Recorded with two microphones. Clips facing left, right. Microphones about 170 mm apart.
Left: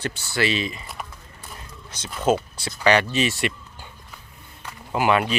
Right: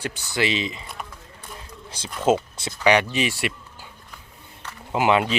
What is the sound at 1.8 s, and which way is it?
Speech, 30° right (ahead or behind).